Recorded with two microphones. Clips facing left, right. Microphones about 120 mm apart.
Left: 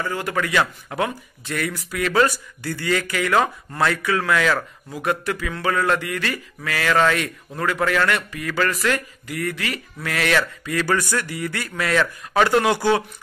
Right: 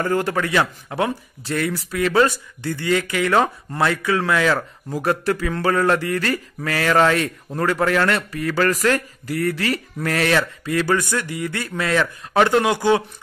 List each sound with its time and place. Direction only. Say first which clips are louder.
0.0 s a man's voice: right 6 dB; 45° right (ahead or behind)
0.3 s speech: right 1 dB; 30° right (ahead or behind)